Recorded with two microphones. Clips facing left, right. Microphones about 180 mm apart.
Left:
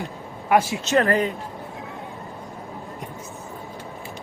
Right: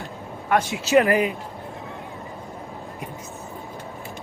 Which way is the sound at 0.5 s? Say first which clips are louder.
Left 3 dB; 5° left (ahead or behind).